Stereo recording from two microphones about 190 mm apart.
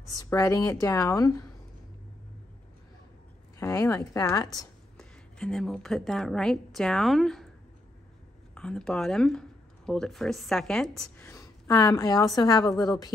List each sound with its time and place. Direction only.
0.1 s speech: 20° left (ahead or behind)
3.5 s speech: 15° left (ahead or behind)
4.9 s a woman's voice: 5° left (ahead or behind)
8.5 s speech: 5° left (ahead or behind)
11.0 s a woman's voice: 15° left (ahead or behind)